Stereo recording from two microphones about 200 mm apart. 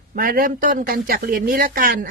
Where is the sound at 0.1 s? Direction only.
45° right (ahead or behind).